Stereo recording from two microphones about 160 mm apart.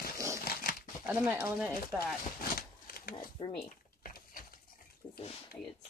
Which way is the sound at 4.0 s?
65° left (ahead or behind).